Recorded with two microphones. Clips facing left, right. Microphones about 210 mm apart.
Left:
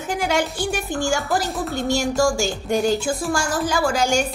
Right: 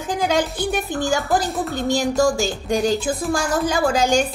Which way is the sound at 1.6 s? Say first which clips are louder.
Right 1 dB; centre (ahead or behind).